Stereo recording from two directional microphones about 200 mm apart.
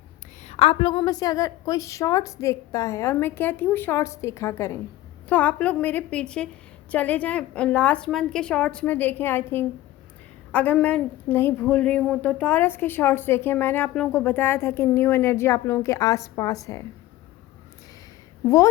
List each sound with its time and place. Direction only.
0.4 s a woman's voice: 30° left (ahead or behind)
18.4 s a woman's voice: 15° left (ahead or behind)